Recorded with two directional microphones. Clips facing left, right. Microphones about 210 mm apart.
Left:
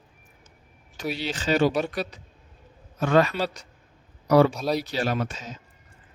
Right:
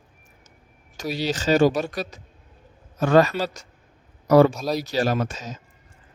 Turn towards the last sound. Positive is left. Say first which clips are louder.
# right 3 dB
turn(degrees=-40)  # may be behind; listen again after turning